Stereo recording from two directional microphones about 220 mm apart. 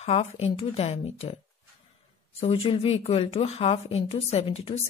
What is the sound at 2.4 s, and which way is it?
A woman's voice, 25° left (ahead or behind).